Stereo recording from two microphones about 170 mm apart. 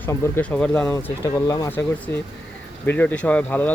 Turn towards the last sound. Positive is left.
turn(degrees=10)  # may be behind; listen again after turning